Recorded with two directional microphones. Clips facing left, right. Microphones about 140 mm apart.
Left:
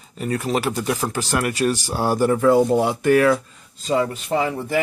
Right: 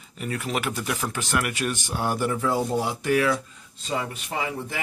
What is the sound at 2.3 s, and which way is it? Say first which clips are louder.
Speech: left 9 dB; 60° left (ahead or behind).